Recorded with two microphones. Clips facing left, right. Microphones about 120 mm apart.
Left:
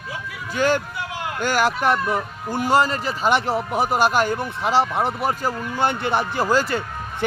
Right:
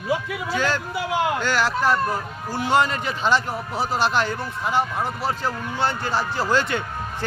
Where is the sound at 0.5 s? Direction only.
55° left (ahead or behind).